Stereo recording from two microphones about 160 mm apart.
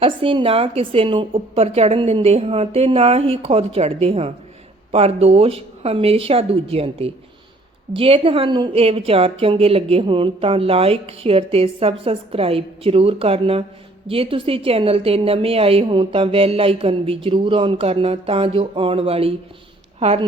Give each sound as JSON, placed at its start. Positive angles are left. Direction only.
{"t": 0.0, "sound": "a woman's voice", "side_deg": -35}